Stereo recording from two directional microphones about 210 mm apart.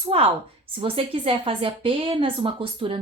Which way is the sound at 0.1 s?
30° right (ahead or behind).